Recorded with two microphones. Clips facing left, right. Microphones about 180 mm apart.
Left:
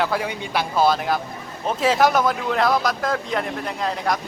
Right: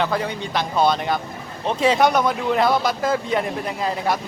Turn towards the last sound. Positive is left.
turn(degrees=-5)  # may be behind; listen again after turning